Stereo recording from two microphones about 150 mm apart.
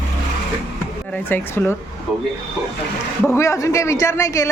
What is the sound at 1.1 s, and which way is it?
Speech, 10° left (ahead or behind).